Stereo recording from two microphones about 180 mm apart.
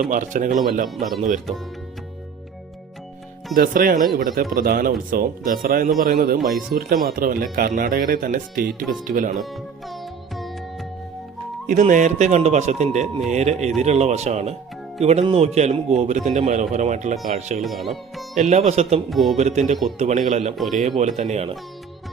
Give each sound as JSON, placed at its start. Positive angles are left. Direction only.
{"t": 0.1, "sound": "speech", "side_deg": -45}
{"t": 0.9, "sound": "speech", "side_deg": 0}
{"t": 3.5, "sound": "a man's voice", "side_deg": -50}
{"t": 9.4, "sound": "music", "side_deg": 0}
{"t": 11.6, "sound": "speech", "side_deg": -45}
{"t": 17.6, "sound": "speech", "side_deg": 0}
{"t": 18.3, "sound": "speech", "side_deg": -40}
{"t": 19.1, "sound": "speech", "side_deg": 0}
{"t": 19.4, "sound": "speech", "side_deg": -40}